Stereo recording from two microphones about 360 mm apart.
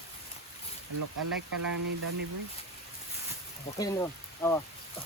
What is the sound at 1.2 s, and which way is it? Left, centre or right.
Speech, right.